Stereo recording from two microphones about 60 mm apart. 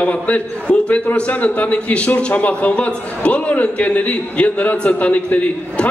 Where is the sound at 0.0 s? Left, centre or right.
Left.